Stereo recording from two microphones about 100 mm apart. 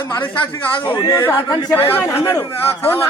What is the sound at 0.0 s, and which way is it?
A man's voice, 50° left (ahead or behind).